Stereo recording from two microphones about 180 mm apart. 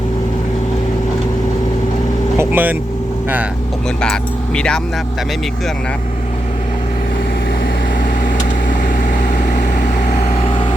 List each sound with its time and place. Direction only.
2.4 s speech: 10° right (ahead or behind)
4.0 s speech: 5° left (ahead or behind)
10.4 s vehicle: 30° left (ahead or behind)